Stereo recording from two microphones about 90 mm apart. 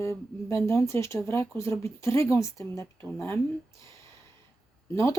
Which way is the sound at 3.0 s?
20° left (ahead or behind).